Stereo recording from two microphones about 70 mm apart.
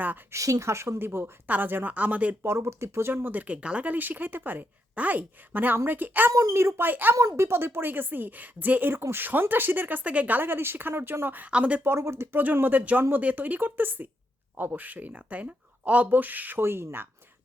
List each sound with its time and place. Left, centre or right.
0.3 s a woman's voice: right
2.4 s speech: right
6.3 s a woman's voice: right
7.2 s speech: right
11.5 s speech: centre
11.8 s a woman's voice: right
12.5 s speech: right